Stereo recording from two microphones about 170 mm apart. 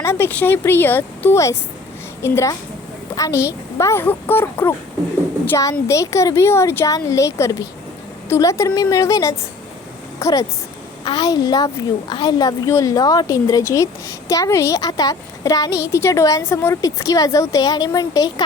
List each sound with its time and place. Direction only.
0.0 s a woman's voice: 15° left (ahead or behind)